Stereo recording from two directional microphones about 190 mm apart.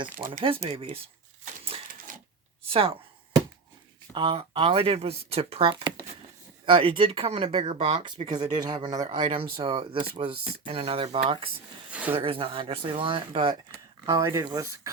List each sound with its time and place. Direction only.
0.3 s speech: 30° right (ahead or behind)
2.1 s shuffling cards: 45° right (ahead or behind)
2.6 s speech: 30° right (ahead or behind)
4.1 s speech: 25° right (ahead or behind)
8.2 s speech: 20° right (ahead or behind)
11.9 s a sound: 5° right (ahead or behind)
12.1 s speech: 30° right (ahead or behind)
14.0 s speech: 20° right (ahead or behind)